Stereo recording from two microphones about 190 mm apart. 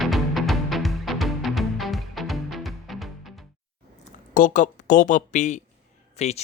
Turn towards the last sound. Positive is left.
turn(degrees=35)  # may be behind; listen again after turning